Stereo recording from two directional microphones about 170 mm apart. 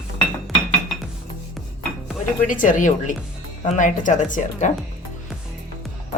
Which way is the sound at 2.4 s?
50° left (ahead or behind).